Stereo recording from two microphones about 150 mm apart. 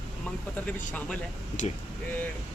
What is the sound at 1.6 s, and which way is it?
Speech, 55° left (ahead or behind).